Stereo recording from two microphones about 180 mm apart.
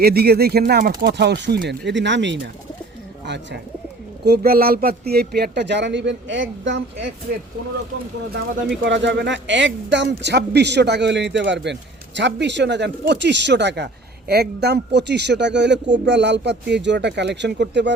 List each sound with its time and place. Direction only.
0.0 s speech: 60° right (ahead or behind); by 2.5 s 85° right
3.2 s speech: 75° right (ahead or behind)
4.3 s speech: 55° right (ahead or behind); by 6.8 s 90° right
8.8 s speech: 85° right